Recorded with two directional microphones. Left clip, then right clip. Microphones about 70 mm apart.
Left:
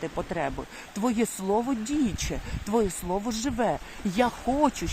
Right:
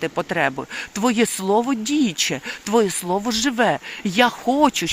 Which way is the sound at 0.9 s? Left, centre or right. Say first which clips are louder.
Right 8 dB; right.